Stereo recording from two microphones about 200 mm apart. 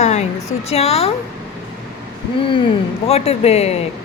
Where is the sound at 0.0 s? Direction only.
35° left (ahead or behind).